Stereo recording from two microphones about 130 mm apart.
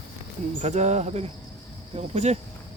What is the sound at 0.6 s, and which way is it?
Speech, 60° right (ahead or behind).